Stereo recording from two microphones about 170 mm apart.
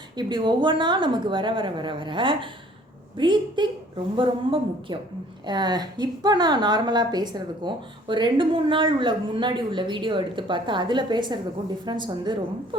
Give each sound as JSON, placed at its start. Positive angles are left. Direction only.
{"t": 0.2, "sound": "a woman's voice", "side_deg": -25}